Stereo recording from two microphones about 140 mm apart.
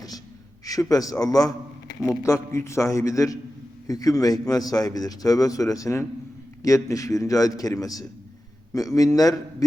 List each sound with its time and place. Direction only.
0.6 s a man's voice: 25° left (ahead or behind)